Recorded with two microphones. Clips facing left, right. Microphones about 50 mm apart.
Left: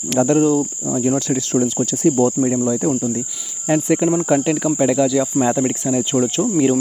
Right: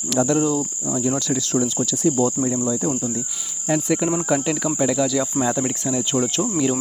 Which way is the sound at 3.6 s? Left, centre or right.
Left.